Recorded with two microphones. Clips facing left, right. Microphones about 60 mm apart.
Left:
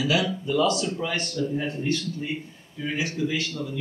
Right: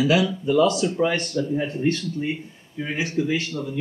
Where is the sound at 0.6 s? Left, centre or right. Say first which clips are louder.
Right 5 dB; right.